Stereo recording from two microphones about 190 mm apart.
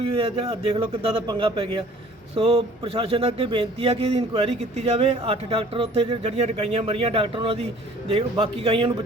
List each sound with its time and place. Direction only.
0.0 s speech: 25° right (ahead or behind)